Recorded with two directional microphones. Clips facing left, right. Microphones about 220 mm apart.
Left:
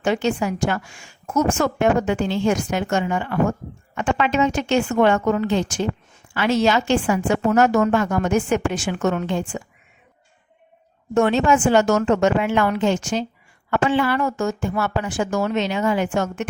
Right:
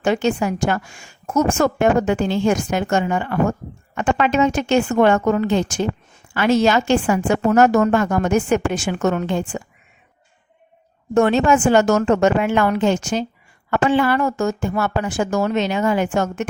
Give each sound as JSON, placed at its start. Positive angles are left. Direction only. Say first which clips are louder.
{"t": 0.0, "sound": "a woman's voice", "louder": "right 2 dB", "side_deg": -45}
{"t": 11.1, "sound": "a woman's voice", "louder": "right 2 dB", "side_deg": -45}